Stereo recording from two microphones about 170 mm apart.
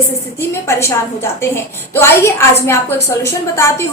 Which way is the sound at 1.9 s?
15° left (ahead or behind).